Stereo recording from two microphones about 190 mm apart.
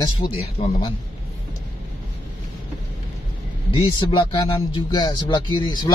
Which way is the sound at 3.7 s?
30° left (ahead or behind).